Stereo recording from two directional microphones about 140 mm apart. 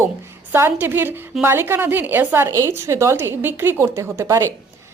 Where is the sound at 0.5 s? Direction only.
15° right (ahead or behind).